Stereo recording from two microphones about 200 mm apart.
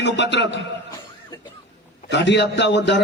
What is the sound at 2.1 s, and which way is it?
Speech, 60° left (ahead or behind).